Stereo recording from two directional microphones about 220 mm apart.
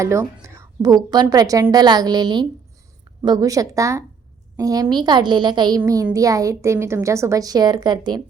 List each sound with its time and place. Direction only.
0.0 s a woman's voice: 15° right (ahead or behind)